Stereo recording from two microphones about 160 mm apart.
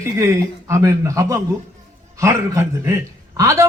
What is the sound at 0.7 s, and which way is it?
A man's voice, 20° right (ahead or behind).